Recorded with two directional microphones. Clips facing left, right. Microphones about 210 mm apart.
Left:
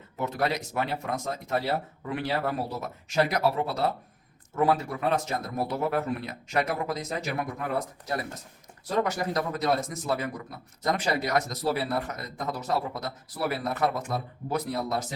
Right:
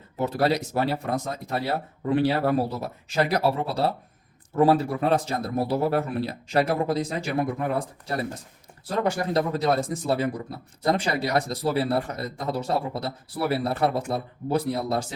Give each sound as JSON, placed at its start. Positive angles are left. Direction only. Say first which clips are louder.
{"t": 0.2, "sound": "a man's voice", "louder": "right 5 dB", "side_deg": -35}